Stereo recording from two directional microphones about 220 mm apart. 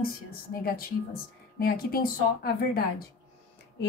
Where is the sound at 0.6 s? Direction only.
45° left (ahead or behind).